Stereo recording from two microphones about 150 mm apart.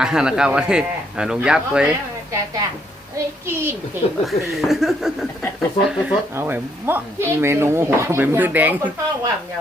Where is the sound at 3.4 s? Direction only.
15° right (ahead or behind).